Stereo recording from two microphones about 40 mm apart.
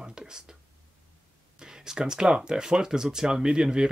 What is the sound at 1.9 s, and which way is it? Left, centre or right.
Speech, centre.